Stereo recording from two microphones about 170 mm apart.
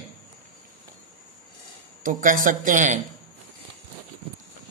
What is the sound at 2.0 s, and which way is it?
Speech, 50° right (ahead or behind).